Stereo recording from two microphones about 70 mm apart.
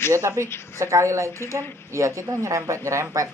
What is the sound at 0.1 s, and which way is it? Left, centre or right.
Speech, right.